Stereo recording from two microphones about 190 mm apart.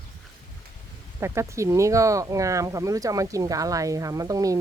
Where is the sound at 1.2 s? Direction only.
15° right (ahead or behind).